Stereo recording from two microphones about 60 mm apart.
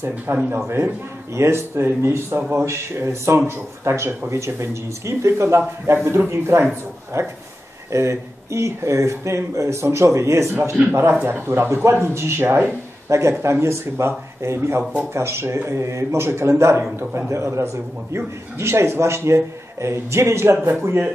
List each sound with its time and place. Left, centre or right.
0.3 s speech: right
13.1 s speech: right